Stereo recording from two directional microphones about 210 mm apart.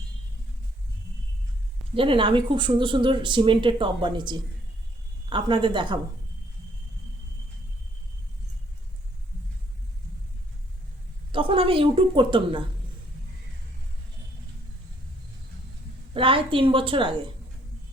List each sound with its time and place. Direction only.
2.0 s speech: 25° right (ahead or behind)
11.3 s a woman's voice: 25° right (ahead or behind)
16.1 s speech: 25° right (ahead or behind)